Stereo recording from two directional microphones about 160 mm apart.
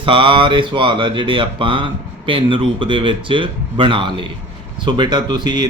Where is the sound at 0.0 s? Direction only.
35° right (ahead or behind).